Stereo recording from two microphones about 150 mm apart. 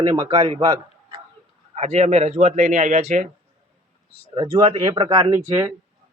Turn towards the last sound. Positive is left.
turn(degrees=-20)  # may be behind; listen again after turning